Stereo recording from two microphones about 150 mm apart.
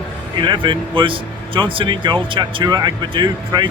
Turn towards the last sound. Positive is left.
turn(degrees=-30)  # may be behind; listen again after turning